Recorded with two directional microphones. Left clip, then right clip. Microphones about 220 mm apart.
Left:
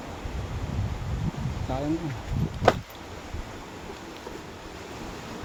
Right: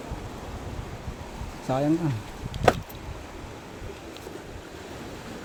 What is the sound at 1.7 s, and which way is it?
Speech, 30° right (ahead or behind).